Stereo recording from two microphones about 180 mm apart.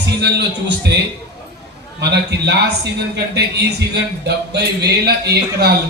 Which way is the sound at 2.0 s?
70° right (ahead or behind).